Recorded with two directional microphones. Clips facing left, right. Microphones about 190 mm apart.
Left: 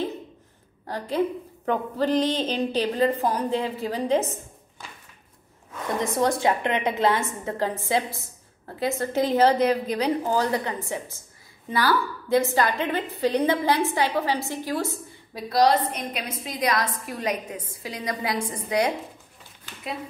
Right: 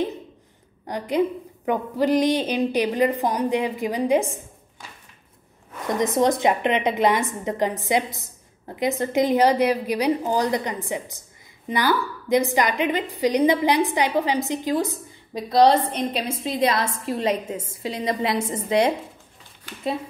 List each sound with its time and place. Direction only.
0.8 s a woman's voice: 15° right (ahead or behind)
5.9 s a woman's voice: 20° right (ahead or behind)